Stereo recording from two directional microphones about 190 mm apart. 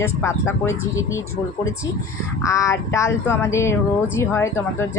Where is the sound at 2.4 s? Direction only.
15° left (ahead or behind).